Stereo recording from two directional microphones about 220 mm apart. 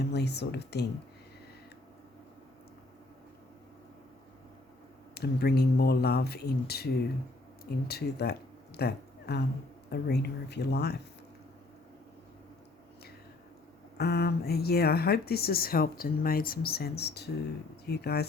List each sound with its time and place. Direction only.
0.0 s speech: 50° left (ahead or behind)
5.1 s speech: 45° left (ahead or behind)
14.0 s speech: 45° left (ahead or behind)